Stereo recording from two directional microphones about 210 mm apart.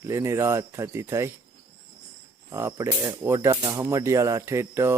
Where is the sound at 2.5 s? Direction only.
15° right (ahead or behind).